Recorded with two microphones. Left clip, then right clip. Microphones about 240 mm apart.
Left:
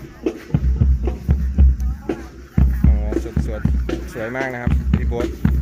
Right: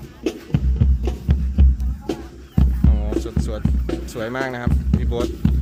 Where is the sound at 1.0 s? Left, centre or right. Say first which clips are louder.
Left 1 dB; right.